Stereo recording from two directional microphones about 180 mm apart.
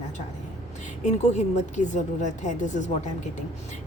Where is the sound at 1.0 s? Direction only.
40° left (ahead or behind).